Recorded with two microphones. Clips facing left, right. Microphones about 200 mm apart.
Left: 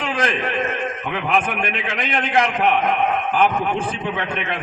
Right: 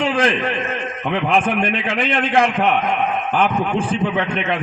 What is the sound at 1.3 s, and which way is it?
A man's voice, 30° right (ahead or behind).